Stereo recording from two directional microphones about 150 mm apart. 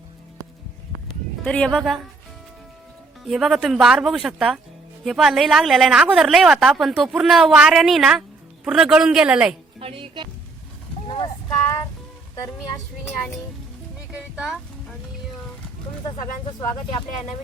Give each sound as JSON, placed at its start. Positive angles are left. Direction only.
{"t": 1.5, "sound": "a woman's voice", "side_deg": 5}
{"t": 3.2, "sound": "a woman's voice", "side_deg": 0}
{"t": 9.8, "sound": "speech", "side_deg": -35}
{"t": 11.0, "sound": "vehicle", "side_deg": 40}
{"t": 14.1, "sound": "speech", "side_deg": -5}
{"t": 16.0, "sound": "speech", "side_deg": 30}